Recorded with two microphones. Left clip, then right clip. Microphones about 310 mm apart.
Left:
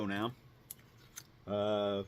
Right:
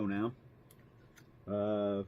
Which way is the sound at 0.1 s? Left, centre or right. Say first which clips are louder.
Even; left.